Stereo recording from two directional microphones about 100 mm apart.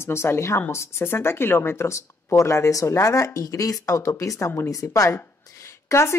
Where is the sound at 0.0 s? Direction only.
25° left (ahead or behind).